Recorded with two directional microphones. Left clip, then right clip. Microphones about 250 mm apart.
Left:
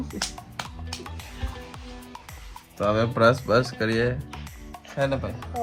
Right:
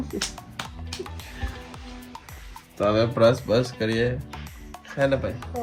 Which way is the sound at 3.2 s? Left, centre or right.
Left.